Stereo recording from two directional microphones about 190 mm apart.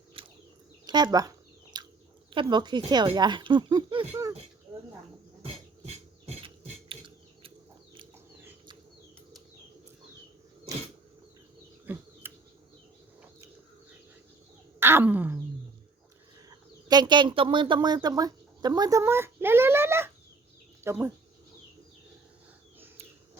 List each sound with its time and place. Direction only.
0.1 s a sound: 30° right (ahead or behind)
0.9 s speech: 20° right (ahead or behind)
1.7 s bird: 20° right (ahead or behind)
2.3 s speech: 25° right (ahead or behind)
5.4 s a sound: 30° right (ahead or behind)
11.9 s bird: 10° right (ahead or behind)
14.8 s wail: 10° right (ahead or behind)
16.5 s speech: 20° right (ahead or behind)